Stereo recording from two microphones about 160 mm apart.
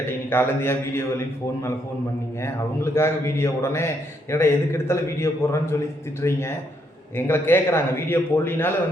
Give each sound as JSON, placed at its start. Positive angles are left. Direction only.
{"t": 0.3, "sound": "a man's voice", "side_deg": 15}
{"t": 2.4, "sound": "a man's voice", "side_deg": 15}